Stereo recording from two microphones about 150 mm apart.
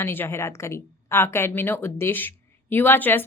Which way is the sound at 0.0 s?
15° left (ahead or behind).